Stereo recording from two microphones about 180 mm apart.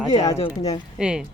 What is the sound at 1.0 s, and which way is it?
Speech, 5° right (ahead or behind).